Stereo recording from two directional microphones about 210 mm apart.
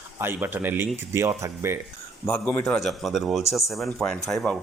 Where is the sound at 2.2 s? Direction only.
10° left (ahead or behind).